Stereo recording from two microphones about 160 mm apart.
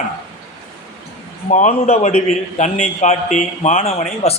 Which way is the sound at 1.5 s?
50° left (ahead or behind).